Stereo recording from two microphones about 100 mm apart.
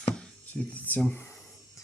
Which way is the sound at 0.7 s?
15° left (ahead or behind).